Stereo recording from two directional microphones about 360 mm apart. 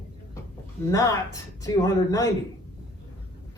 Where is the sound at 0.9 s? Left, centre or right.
Centre.